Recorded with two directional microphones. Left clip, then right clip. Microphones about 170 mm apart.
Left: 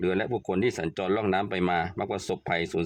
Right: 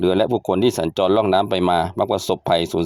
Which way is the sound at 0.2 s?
30° right (ahead or behind).